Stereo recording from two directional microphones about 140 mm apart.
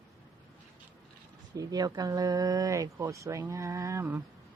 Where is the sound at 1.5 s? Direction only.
30° right (ahead or behind).